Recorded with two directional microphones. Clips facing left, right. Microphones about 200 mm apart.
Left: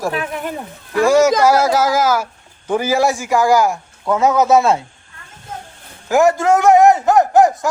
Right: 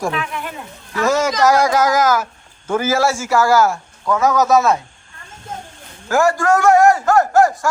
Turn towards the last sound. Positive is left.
turn(degrees=20)  # may be behind; listen again after turning